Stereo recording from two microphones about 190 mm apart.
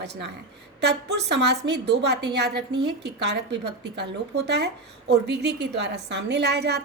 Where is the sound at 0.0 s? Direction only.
65° right (ahead or behind).